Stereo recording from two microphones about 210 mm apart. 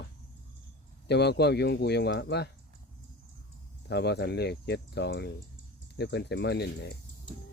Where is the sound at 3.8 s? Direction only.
50° left (ahead or behind).